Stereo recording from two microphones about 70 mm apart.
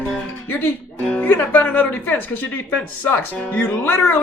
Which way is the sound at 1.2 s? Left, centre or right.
Left.